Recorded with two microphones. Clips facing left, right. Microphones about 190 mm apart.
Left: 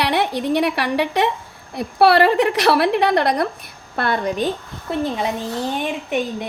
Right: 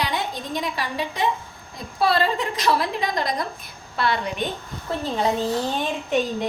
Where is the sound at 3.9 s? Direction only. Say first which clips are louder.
Left 2 dB; 55° left (ahead or behind).